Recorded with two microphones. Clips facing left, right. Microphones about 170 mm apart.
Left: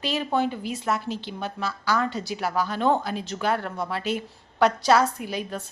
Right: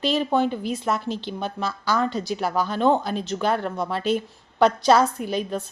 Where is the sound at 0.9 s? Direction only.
10° left (ahead or behind).